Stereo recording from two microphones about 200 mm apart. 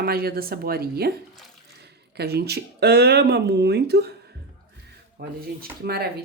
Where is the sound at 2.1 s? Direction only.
55° right (ahead or behind).